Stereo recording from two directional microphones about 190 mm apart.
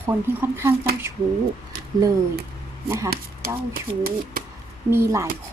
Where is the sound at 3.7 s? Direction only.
50° right (ahead or behind).